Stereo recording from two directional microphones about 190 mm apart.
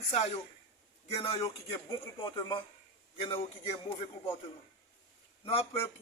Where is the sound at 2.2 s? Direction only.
20° left (ahead or behind).